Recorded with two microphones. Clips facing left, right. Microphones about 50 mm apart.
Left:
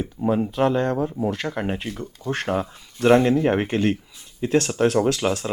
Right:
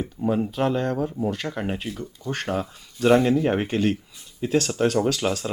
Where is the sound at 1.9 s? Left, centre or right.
Left.